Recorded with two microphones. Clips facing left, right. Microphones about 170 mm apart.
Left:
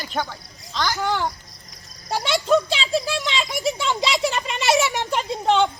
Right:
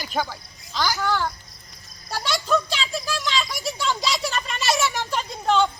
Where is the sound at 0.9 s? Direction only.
20° left (ahead or behind).